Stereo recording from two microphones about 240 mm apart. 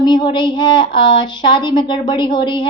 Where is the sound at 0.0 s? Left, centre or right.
Centre.